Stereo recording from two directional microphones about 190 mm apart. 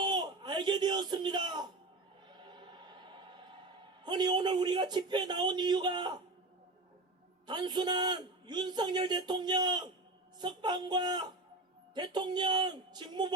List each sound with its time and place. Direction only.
0.0 s a sound: 25° right (ahead or behind)
2.2 s choir: 25° right (ahead or behind)
4.0 s a man's voice: 20° right (ahead or behind)
7.4 s a man's voice: 20° right (ahead or behind)